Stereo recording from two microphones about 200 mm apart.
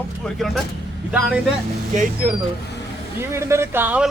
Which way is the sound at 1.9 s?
40° right (ahead or behind).